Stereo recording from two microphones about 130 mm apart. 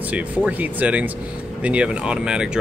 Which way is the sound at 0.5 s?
10° right (ahead or behind).